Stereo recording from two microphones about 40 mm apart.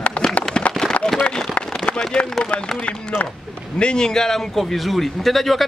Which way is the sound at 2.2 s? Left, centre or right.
Left.